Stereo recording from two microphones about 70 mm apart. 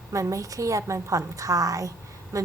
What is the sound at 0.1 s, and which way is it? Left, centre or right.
Speech, right.